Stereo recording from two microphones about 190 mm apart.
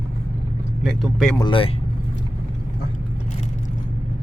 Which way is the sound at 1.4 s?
25° left (ahead or behind).